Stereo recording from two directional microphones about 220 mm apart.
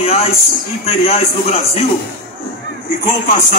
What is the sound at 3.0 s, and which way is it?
Speech, 35° left (ahead or behind).